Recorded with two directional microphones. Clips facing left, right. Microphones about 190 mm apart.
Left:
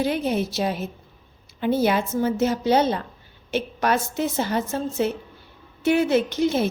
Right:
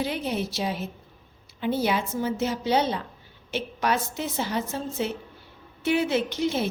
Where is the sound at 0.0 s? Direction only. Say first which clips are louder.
Left 5 dB; 50° left (ahead or behind).